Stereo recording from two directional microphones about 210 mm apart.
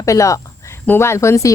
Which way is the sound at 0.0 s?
15° left (ahead or behind).